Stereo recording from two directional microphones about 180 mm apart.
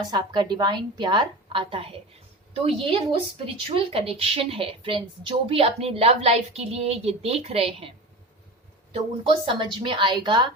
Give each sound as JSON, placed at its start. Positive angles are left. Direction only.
{"t": 0.1, "sound": "a woman's voice", "side_deg": -25}